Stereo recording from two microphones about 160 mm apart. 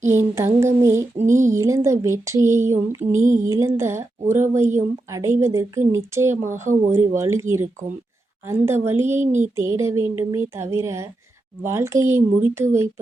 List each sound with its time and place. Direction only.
0.0 s speech: 15° right (ahead or behind)
1.2 s speech: 50° right (ahead or behind)
1.5 s speech: 20° right (ahead or behind)
3.2 s speech: 50° right (ahead or behind)
3.4 s speech: 20° right (ahead or behind)
9.1 s speech: 50° right (ahead or behind)
9.6 s speech: 20° right (ahead or behind)